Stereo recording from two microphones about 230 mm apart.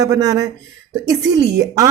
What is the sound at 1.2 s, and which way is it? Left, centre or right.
Speech, right.